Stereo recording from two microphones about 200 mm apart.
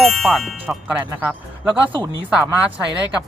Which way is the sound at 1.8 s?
25° right (ahead or behind).